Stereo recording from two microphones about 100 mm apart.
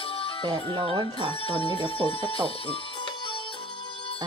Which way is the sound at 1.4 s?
65° left (ahead or behind).